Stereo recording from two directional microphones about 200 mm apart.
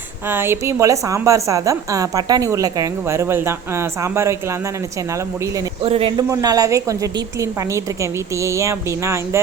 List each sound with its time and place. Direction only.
0.3 s a woman's voice: 10° right (ahead or behind)
5.8 s a woman's voice: 30° right (ahead or behind)